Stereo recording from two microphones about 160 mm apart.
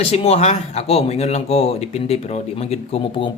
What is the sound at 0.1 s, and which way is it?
Speech, 40° left (ahead or behind).